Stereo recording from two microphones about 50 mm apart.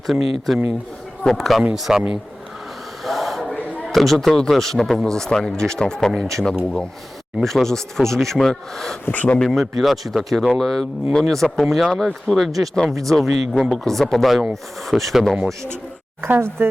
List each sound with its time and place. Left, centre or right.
0.1 s speech: centre
1.7 s a man's voice: centre
3.0 s a sound: centre
3.8 s speech: centre
9.1 s speech: left
9.5 s speech: centre
11.5 s speech: centre
16.6 s speech: right